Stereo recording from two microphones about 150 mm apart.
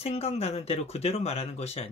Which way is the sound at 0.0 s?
45° left (ahead or behind).